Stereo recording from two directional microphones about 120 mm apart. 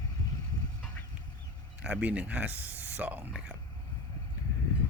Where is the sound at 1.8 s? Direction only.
10° right (ahead or behind).